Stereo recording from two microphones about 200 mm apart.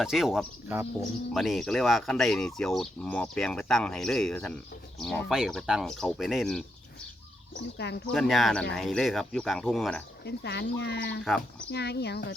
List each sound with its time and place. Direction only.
0.0 s speech: centre (ahead or behind)
7.5 s speech: 55° left (ahead or behind)
8.1 s speech: centre (ahead or behind)
10.2 s speech: 55° left (ahead or behind)